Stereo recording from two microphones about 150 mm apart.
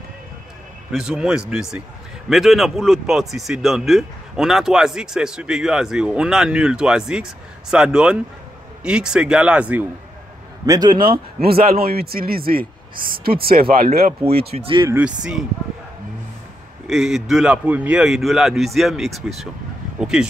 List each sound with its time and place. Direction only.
0.9 s a man's voice: 5° right (ahead or behind)
10.6 s a man's voice: 25° right (ahead or behind)
11.4 s speech: 85° right
14.5 s speech: 35° right (ahead or behind)
14.9 s speech: 10° right (ahead or behind)
16.8 s a man's voice: centre (ahead or behind)